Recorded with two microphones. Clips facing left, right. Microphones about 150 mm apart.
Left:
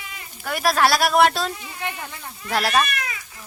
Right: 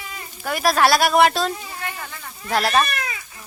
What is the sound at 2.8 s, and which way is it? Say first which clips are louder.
Goat: right 2 dB; 30° right (ahead or behind).